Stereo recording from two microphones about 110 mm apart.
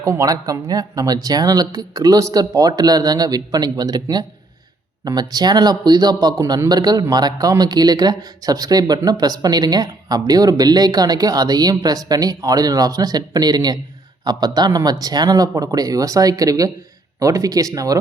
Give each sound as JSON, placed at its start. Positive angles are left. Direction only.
{"t": 0.0, "sound": "speech", "side_deg": -30}